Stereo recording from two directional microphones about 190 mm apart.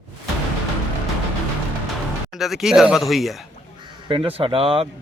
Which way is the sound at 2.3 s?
Centre (ahead or behind).